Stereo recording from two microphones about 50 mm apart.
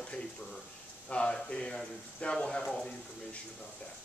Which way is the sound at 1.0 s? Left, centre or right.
Left.